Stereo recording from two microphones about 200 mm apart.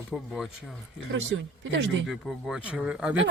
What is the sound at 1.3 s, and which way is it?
Speech, 70° right (ahead or behind).